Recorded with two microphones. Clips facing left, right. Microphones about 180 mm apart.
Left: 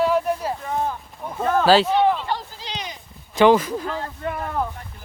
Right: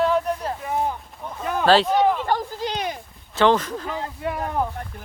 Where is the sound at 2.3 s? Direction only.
50° right (ahead or behind).